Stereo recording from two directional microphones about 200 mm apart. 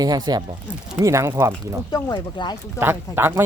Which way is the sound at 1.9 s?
20° left (ahead or behind).